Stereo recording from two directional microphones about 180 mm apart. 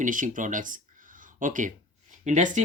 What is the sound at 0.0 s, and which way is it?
Speech, 45° right (ahead or behind).